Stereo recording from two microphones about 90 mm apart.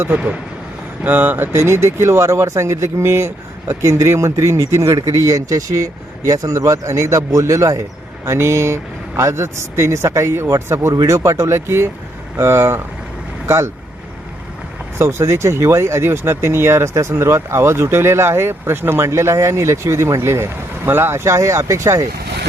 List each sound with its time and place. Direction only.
0.1 s speech: 15° right (ahead or behind); by 12.8 s 30° right (ahead or behind)
14.9 s speech: 30° right (ahead or behind)